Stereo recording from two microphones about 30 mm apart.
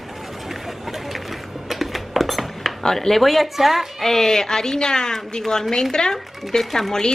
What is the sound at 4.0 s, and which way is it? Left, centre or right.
Speech, centre.